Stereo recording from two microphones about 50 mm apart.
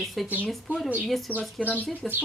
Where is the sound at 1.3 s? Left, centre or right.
Left.